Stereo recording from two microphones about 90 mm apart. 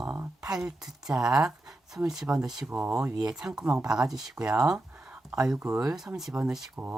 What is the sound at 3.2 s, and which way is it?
Speech, 10° right (ahead or behind).